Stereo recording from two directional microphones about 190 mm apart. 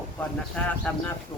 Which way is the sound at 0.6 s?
5° left (ahead or behind).